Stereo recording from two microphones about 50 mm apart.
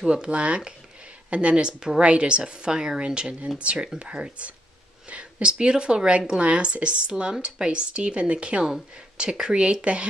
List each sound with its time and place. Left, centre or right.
0.0 s speech: centre